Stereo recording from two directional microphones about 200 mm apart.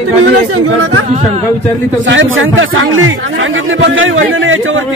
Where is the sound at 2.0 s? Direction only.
75° right (ahead or behind).